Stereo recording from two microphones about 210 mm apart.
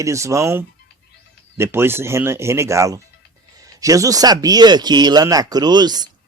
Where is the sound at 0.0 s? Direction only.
15° right (ahead or behind).